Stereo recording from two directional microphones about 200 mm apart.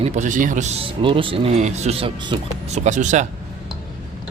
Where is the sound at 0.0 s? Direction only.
40° right (ahead or behind).